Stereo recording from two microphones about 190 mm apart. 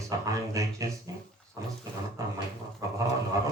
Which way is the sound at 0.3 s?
15° right (ahead or behind).